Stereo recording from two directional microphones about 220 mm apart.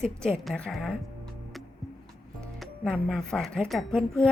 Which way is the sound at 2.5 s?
Centre (ahead or behind).